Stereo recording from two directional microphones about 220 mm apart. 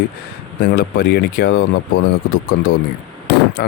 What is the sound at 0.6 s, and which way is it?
Speech, 45° left (ahead or behind).